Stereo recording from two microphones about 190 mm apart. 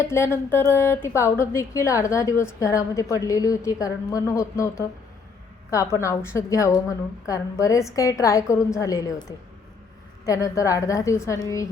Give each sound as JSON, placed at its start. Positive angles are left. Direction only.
{"t": 0.0, "sound": "speech", "side_deg": 15}
{"t": 10.2, "sound": "speech", "side_deg": 15}